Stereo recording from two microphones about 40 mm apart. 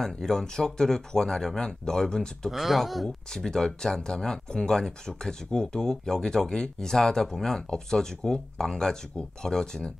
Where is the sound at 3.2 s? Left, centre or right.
Centre.